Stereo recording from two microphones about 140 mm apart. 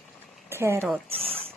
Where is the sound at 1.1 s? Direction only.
45° right (ahead or behind).